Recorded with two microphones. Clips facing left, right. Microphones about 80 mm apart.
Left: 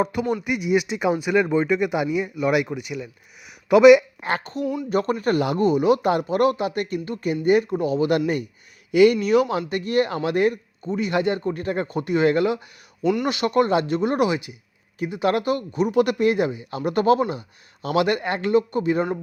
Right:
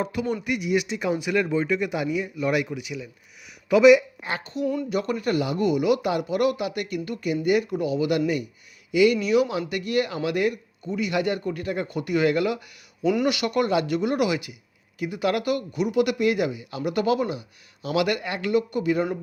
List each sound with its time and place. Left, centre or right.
0.0 s speech: left
2.6 s speech: left
4.6 s speech: centre
4.9 s speech: left
5.6 s speech: left
13.0 s speech: centre
13.2 s speech: left